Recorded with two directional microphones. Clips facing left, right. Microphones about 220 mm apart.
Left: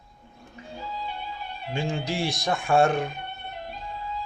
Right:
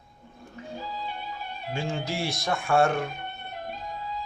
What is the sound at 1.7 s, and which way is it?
A man's voice, 15° left (ahead or behind).